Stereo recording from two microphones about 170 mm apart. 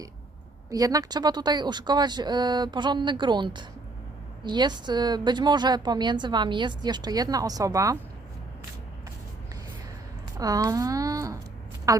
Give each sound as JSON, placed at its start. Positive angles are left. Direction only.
{"t": 0.7, "sound": "a woman's voice", "side_deg": -20}
{"t": 10.3, "sound": "a woman's voice", "side_deg": -20}